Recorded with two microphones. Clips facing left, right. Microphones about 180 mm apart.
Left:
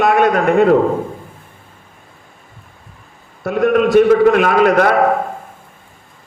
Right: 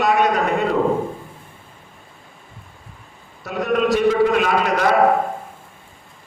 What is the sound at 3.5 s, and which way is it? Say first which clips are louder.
A man's voice: left 5 dB; 50° left (ahead or behind).